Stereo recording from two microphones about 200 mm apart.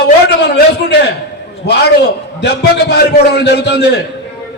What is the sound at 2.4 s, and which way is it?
A man's voice, 55° left (ahead or behind).